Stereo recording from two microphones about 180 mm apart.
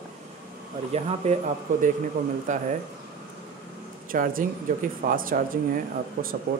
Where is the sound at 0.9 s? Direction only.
40° right (ahead or behind).